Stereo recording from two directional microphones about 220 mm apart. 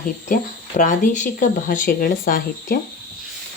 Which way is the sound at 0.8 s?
35° left (ahead or behind).